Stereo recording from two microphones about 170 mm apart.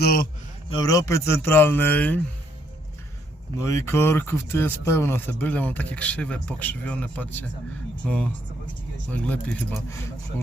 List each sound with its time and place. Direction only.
0.0 s a man's voice: 65° left (ahead or behind)
0.7 s speech: 20° left (ahead or behind)
3.6 s speech: 15° left (ahead or behind)